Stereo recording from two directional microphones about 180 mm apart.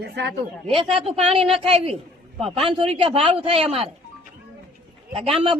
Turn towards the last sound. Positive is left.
turn(degrees=-30)  # may be behind; listen again after turning